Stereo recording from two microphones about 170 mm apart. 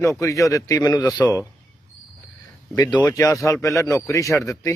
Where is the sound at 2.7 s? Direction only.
25° left (ahead or behind).